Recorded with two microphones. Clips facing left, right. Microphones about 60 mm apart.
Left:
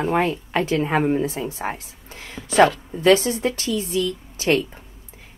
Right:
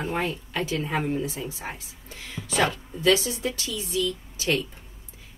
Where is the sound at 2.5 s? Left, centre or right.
Left.